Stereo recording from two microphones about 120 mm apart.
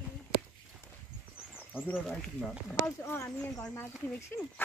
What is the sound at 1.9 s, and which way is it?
Speech, 10° left (ahead or behind).